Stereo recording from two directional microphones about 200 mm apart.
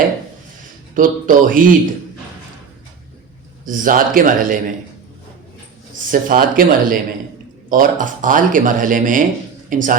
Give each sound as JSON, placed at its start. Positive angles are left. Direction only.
{"t": 0.9, "sound": "a man's voice", "side_deg": -40}
{"t": 3.7, "sound": "a man's voice", "side_deg": -40}
{"t": 6.1, "sound": "a man's voice", "side_deg": -45}